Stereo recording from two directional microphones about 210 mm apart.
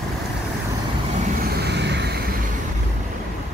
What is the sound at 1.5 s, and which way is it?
Vehicle, 50° right (ahead or behind).